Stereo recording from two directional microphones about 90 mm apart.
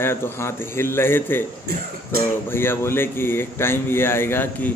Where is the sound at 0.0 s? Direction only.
25° left (ahead or behind).